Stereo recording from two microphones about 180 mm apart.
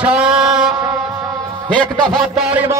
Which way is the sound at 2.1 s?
Centre (ahead or behind).